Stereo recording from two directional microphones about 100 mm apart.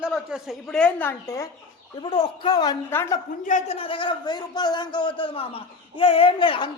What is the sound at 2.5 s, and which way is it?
Speech, 45° left (ahead or behind).